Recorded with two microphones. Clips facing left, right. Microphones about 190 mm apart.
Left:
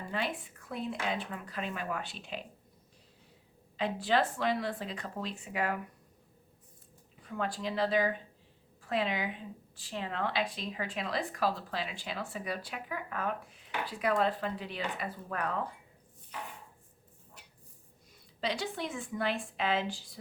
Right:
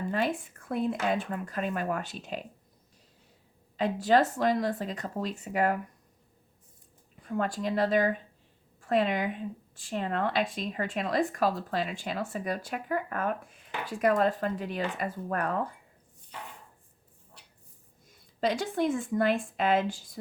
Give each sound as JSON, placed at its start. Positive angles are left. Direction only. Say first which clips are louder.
{"t": 0.1, "sound": "speech", "louder": "right 4 dB", "side_deg": -45}
{"t": 3.8, "sound": "speech", "louder": "right 5 dB", "side_deg": -45}
{"t": 7.3, "sound": "speech", "louder": "right 5 dB", "side_deg": -45}
{"t": 18.3, "sound": "speech", "louder": "right 7 dB", "side_deg": -45}